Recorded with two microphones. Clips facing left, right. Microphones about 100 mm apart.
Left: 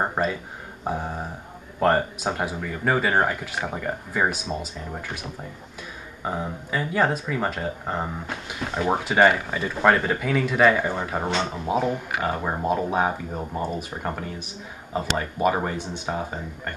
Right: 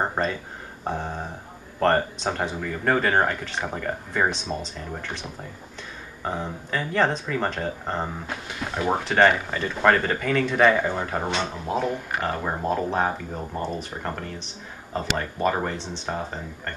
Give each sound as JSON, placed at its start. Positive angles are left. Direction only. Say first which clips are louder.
{"t": 0.0, "sound": "speech", "louder": "left 1 dB", "side_deg": 5}
{"t": 6.2, "sound": "speech", "louder": "left 1 dB", "side_deg": 5}